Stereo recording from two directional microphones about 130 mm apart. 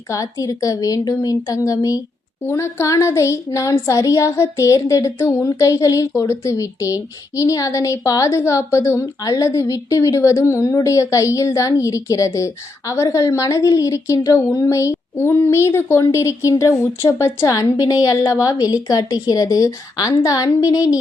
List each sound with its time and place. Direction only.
0.1 s speech: 25° left (ahead or behind)